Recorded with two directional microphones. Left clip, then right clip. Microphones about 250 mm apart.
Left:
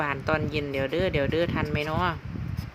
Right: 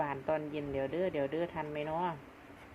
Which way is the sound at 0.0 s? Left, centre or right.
Left.